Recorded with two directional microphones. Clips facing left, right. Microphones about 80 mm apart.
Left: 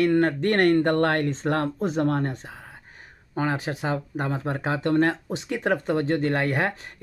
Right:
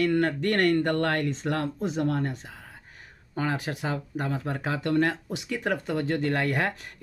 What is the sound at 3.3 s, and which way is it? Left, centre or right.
Speech, left.